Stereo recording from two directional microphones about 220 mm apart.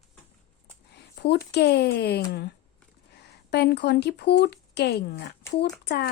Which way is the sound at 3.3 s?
50° left (ahead or behind).